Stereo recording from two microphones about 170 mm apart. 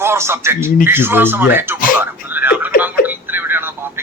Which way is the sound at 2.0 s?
10° right (ahead or behind).